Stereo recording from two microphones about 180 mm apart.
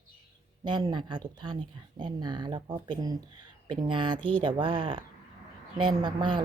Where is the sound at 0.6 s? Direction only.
25° right (ahead or behind).